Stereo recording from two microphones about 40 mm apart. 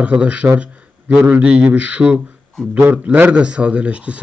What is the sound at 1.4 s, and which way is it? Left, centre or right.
Speech, right.